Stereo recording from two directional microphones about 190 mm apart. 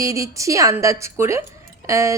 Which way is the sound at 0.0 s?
15° right (ahead or behind).